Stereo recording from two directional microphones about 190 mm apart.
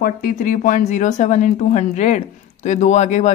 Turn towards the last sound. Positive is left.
turn(degrees=35)  # may be behind; listen again after turning